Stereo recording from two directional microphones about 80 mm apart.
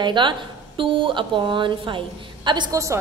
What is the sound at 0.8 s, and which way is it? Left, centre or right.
Speech, right.